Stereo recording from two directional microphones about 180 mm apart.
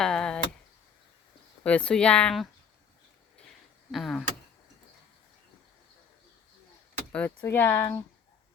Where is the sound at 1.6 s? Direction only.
5° left (ahead or behind).